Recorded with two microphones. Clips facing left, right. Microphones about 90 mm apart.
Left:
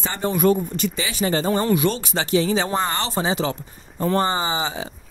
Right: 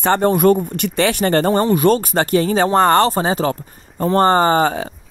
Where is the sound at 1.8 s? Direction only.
45° right (ahead or behind).